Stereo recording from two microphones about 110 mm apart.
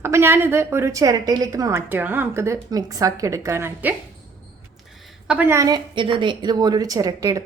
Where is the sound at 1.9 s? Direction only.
15° right (ahead or behind).